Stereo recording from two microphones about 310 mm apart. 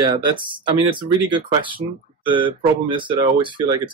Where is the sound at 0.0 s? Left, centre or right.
Centre.